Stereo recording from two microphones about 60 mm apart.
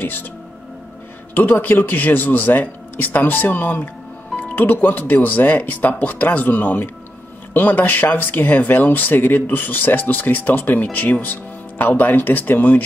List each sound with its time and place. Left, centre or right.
0.0 s speech: left
1.3 s speech: left